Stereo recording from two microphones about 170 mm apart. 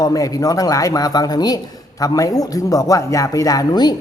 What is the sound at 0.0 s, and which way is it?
Speech, 20° left (ahead or behind).